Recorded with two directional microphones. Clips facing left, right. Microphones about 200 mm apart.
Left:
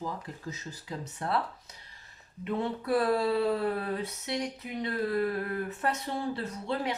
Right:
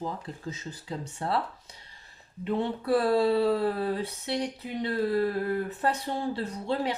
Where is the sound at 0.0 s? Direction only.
30° right (ahead or behind).